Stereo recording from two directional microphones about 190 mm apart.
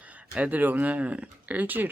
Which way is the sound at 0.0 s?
5° right (ahead or behind).